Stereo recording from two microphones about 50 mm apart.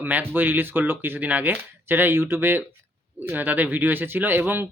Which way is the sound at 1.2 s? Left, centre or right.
Right.